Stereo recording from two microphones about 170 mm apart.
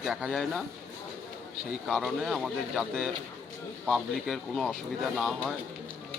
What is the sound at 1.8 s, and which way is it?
Speech, centre (ahead or behind).